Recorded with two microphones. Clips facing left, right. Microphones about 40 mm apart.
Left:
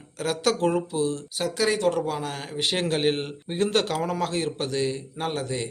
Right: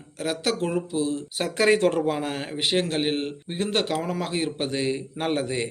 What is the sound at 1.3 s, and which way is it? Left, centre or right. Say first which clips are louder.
Speech: right 5 dB; right.